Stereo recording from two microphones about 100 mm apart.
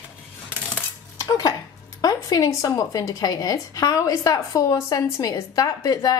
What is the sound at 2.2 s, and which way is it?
A woman's voice, 35° left (ahead or behind).